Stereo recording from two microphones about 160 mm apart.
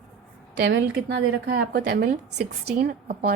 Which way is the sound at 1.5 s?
90° right.